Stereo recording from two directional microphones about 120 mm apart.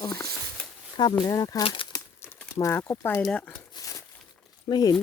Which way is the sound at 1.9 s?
25° left (ahead or behind).